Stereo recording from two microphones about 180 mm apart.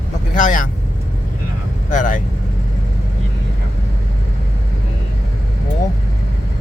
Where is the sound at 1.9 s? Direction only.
45° left (ahead or behind).